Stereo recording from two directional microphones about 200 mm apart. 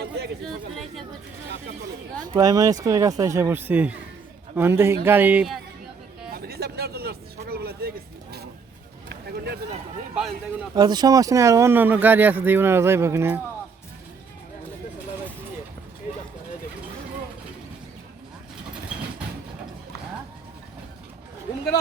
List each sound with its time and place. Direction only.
0.4 s speech: centre (ahead or behind)
2.3 s speech: 20° right (ahead or behind)
6.3 s a sound: 50° right (ahead or behind)
10.8 s speech: 20° right (ahead or behind)